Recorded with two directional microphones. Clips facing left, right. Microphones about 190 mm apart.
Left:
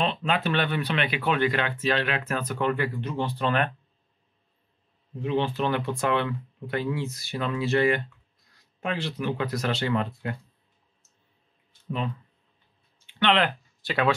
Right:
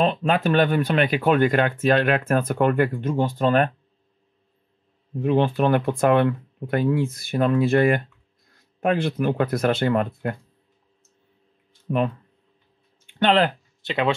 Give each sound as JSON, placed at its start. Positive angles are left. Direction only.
{"t": 0.0, "sound": "speech", "side_deg": -45}
{"t": 5.2, "sound": "speech", "side_deg": -50}
{"t": 13.0, "sound": "a sound", "side_deg": -40}
{"t": 13.8, "sound": "speech", "side_deg": -20}